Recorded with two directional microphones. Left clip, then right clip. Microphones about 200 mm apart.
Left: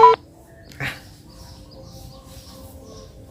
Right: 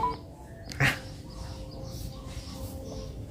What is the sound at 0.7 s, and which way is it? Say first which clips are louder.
Dog: right 3 dB; 15° right (ahead or behind).